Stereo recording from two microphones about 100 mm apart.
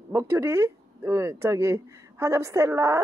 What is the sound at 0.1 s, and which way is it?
Speech, 30° right (ahead or behind).